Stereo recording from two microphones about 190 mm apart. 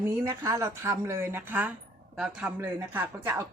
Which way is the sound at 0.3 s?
15° right (ahead or behind).